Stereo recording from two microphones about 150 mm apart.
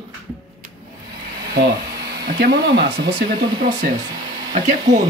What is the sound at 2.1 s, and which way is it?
Speech, 90° right.